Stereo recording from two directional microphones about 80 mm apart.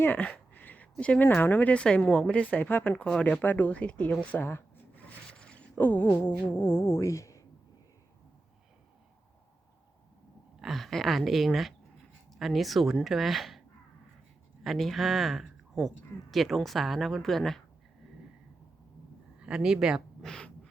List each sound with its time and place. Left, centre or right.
0.0 s a sound: left
0.3 s speech: left
2.0 s a sound: centre
3.0 s speech: centre
5.0 s zipper: centre
5.7 s a sound: left
10.6 s speech: centre
14.6 s speech: centre
19.4 s speech: centre
20.2 s speech: centre